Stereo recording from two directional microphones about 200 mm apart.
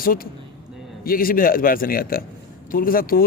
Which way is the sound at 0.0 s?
45° left (ahead or behind).